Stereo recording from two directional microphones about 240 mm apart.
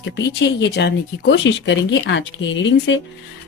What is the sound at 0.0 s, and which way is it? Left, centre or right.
Speech, left.